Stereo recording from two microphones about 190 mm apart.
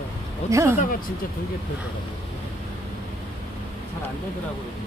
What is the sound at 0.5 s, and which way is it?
Speech, 15° right (ahead or behind).